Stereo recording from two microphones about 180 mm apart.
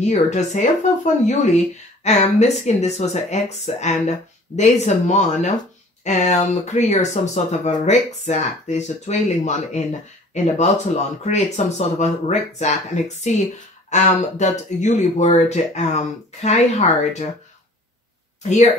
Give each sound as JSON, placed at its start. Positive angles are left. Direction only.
{"t": 0.0, "sound": "speech", "side_deg": 40}
{"t": 18.4, "sound": "speech", "side_deg": 40}